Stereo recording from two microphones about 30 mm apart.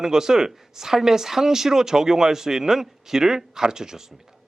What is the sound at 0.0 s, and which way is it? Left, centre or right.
Speech, centre.